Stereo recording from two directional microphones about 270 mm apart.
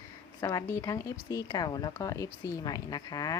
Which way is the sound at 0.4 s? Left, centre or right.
Centre.